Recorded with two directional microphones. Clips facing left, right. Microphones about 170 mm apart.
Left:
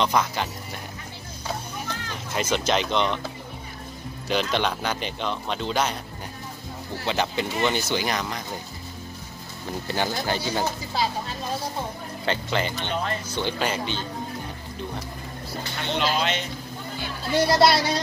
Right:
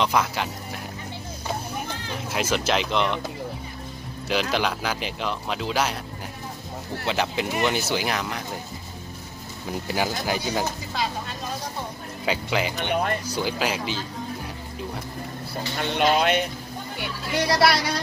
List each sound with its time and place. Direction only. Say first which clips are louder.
0.0 s speech: even; 5° right (ahead or behind)
2.3 s speech: even; centre (ahead or behind)
4.3 s speech: even; 5° right (ahead or behind)
7.1 s speech: even; 5° right (ahead or behind)
9.7 s speech: right 1 dB; 5° right (ahead or behind)
12.3 s speech: right 1 dB; 5° right (ahead or behind)
15.8 s speech: right 4 dB; 55° right (ahead or behind)
17.5 s speech: left 1 dB; 25° left (ahead or behind)